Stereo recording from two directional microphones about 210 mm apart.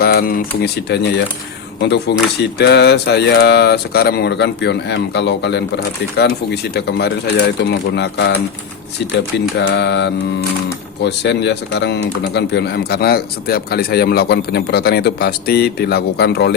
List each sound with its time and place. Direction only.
0.0 s speech: 45° left (ahead or behind)
9.6 s mantra: 55° left (ahead or behind)
11.0 s speech: 55° left (ahead or behind)